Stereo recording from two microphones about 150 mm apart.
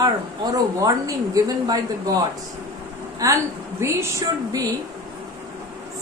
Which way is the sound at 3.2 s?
20° right (ahead or behind).